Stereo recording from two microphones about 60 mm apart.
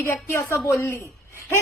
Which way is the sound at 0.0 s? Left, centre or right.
Left.